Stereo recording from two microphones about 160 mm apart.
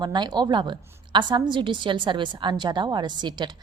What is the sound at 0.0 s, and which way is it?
A woman's voice, 25° right (ahead or behind).